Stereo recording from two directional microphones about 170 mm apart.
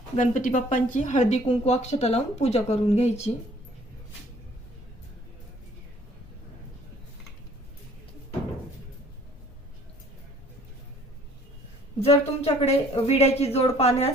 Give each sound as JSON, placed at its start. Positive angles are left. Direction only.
{"t": 0.2, "sound": "a woman's voice", "side_deg": 50}
{"t": 12.0, "sound": "a woman's voice", "side_deg": 35}